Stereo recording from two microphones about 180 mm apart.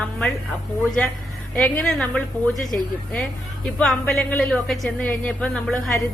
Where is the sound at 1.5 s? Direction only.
5° left (ahead or behind).